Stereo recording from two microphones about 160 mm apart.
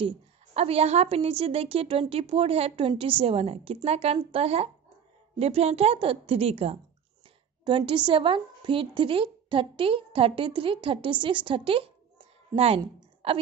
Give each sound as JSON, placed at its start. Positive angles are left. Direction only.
{"t": 0.6, "sound": "a woman's voice", "side_deg": -40}